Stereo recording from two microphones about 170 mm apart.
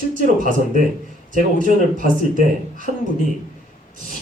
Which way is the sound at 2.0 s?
50° right (ahead or behind).